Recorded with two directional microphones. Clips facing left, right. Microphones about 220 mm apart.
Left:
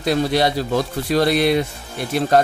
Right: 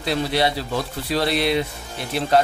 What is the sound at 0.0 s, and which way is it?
Speech, 45° left (ahead or behind).